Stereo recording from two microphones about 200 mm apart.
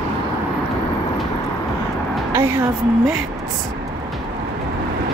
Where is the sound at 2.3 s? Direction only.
10° right (ahead or behind).